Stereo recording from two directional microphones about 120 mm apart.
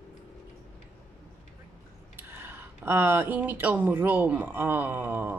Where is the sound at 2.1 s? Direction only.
20° right (ahead or behind).